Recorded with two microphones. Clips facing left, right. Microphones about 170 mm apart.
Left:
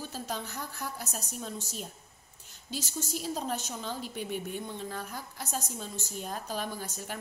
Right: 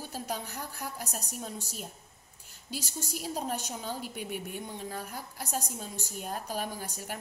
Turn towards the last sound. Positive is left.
turn(degrees=-10)  # may be behind; listen again after turning